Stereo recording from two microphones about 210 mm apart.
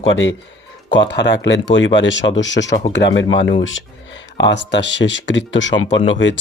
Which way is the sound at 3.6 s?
65° left (ahead or behind).